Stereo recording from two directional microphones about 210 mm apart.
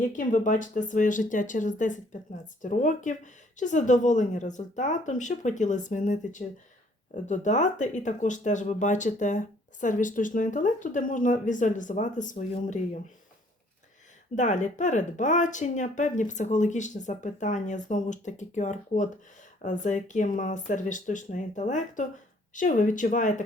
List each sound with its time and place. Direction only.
0.0 s speech: 40° left (ahead or behind)
14.3 s speech: 35° left (ahead or behind)